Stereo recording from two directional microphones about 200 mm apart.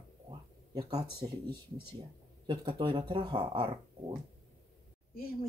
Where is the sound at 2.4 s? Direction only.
25° right (ahead or behind).